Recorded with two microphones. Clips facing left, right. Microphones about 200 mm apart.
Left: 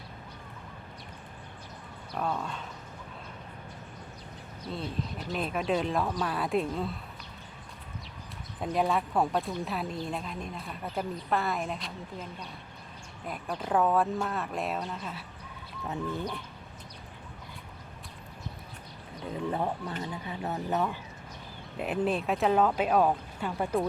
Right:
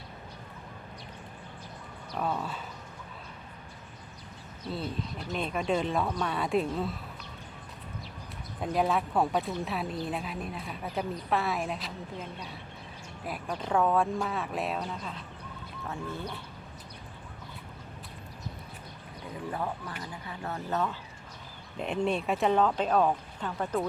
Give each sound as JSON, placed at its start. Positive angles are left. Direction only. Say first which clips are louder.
{"t": 2.1, "sound": "speech", "louder": "even", "side_deg": -5}
{"t": 4.7, "sound": "speech", "louder": "even", "side_deg": 0}
{"t": 8.6, "sound": "speech", "louder": "even", "side_deg": 0}
{"t": 13.2, "sound": "speech", "louder": "even", "side_deg": -5}
{"t": 15.9, "sound": "speech", "louder": "left 4 dB", "side_deg": 15}
{"t": 19.3, "sound": "a sound", "louder": "left 4 dB", "side_deg": 25}
{"t": 20.0, "sound": "speech", "louder": "left 4 dB", "side_deg": 20}
{"t": 21.8, "sound": "speech", "louder": "even", "side_deg": 5}